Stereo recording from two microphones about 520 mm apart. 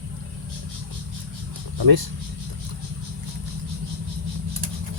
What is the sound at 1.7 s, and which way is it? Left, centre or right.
Cricket, right.